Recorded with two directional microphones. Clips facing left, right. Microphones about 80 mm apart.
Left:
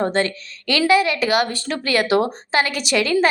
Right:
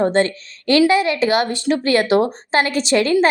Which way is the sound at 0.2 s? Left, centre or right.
Right.